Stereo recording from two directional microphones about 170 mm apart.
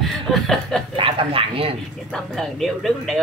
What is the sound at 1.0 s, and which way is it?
Speech, 30° right (ahead or behind).